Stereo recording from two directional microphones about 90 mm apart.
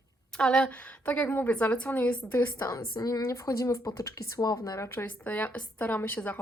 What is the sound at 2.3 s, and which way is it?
Speech, 30° left (ahead or behind).